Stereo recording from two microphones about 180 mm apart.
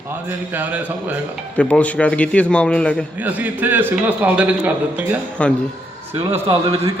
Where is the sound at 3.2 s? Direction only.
10° right (ahead or behind).